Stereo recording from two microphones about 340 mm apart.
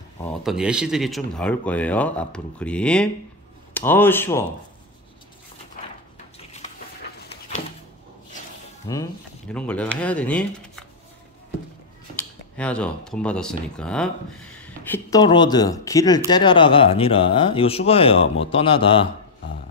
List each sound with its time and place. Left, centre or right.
0.2 s speech: centre
8.9 s speech: centre
12.2 s speech: centre